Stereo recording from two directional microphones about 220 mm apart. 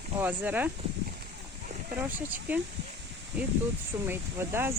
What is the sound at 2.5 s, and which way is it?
Speech, 10° right (ahead or behind).